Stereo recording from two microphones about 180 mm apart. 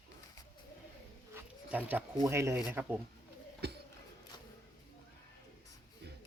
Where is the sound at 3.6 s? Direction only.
65° right (ahead or behind).